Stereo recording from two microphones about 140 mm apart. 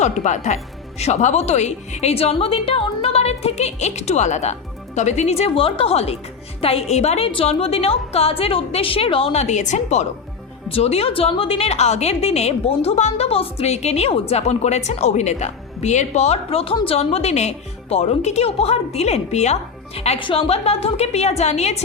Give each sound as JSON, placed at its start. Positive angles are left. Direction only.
{"t": 0.0, "sound": "a woman's voice", "side_deg": 60}
{"t": 20.0, "sound": "a woman's voice", "side_deg": 40}